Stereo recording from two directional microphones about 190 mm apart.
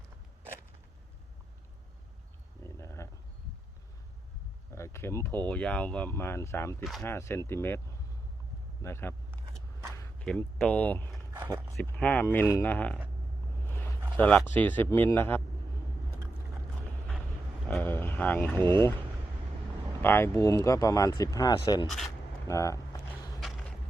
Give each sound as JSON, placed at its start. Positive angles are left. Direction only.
{"t": 2.6, "sound": "a sound", "side_deg": 15}
{"t": 4.7, "sound": "a sound", "side_deg": 15}
{"t": 5.5, "sound": "speech", "side_deg": 5}
{"t": 8.8, "sound": "speech", "side_deg": 10}
{"t": 10.2, "sound": "speech", "side_deg": 5}
{"t": 11.3, "sound": "speech", "side_deg": -15}
{"t": 11.8, "sound": "speech", "side_deg": 10}
{"t": 13.7, "sound": "a sound", "side_deg": 10}
{"t": 14.2, "sound": "speech", "side_deg": 5}
{"t": 17.7, "sound": "vehicle", "side_deg": 10}
{"t": 20.0, "sound": "speech", "side_deg": 10}
{"t": 21.8, "sound": "speech", "side_deg": 0}
{"t": 22.4, "sound": "speech", "side_deg": 15}
{"t": 23.4, "sound": "vehicle", "side_deg": 0}